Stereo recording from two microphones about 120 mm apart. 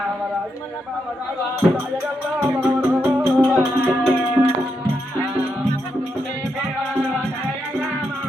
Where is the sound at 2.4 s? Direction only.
15° right (ahead or behind).